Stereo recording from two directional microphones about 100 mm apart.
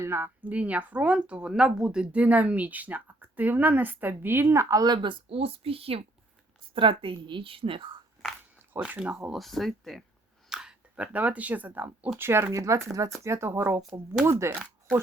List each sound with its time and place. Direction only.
0.0 s speech: 20° right (ahead or behind)
5.0 s a woman's voice: 75° right (ahead or behind)
6.7 s a woman's voice: 60° right (ahead or behind)
8.8 s speech: 10° right (ahead or behind); by 14.5 s 30° right (ahead or behind)